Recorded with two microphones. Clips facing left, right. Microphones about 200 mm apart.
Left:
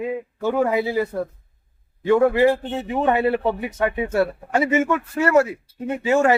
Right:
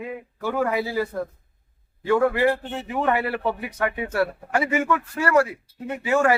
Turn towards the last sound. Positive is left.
turn(degrees=25)  # may be behind; listen again after turning